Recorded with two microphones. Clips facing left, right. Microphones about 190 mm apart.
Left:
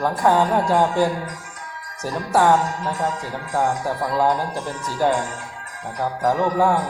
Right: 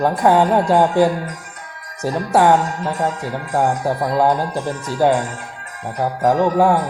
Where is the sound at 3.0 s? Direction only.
50° right (ahead or behind).